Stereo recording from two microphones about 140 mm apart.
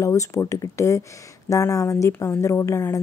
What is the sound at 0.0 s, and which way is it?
Speech, 20° left (ahead or behind).